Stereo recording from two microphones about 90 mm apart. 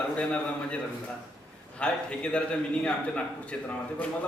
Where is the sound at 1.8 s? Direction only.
15° left (ahead or behind).